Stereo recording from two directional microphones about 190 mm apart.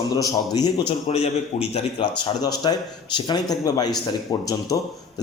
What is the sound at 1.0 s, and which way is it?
A man's voice, 35° left (ahead or behind).